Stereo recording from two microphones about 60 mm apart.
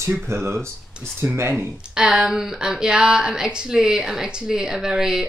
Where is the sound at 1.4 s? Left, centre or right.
Right.